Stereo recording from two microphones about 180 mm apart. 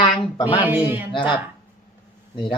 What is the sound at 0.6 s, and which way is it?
Speech, 10° right (ahead or behind).